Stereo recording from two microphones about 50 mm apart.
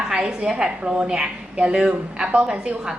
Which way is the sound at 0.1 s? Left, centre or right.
Centre.